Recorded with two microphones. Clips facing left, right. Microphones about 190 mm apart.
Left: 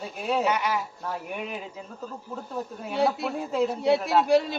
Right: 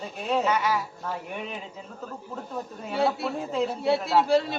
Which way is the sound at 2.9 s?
15° left (ahead or behind).